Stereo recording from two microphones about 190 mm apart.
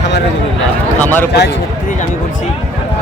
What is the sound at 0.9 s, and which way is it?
Speech, 10° left (ahead or behind).